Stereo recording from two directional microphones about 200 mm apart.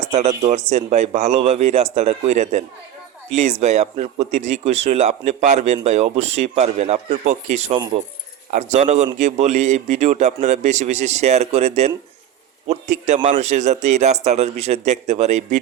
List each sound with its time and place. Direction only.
0.1 s speech: 35° right (ahead or behind)